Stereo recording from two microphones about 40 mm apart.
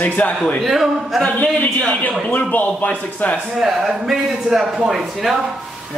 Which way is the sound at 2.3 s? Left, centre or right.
Left.